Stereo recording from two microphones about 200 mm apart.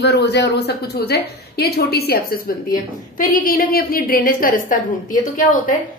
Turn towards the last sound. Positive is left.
turn(degrees=40)  # may be behind; listen again after turning